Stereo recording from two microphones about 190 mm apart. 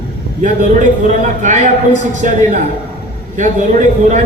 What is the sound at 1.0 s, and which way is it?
A man's voice, 40° right (ahead or behind).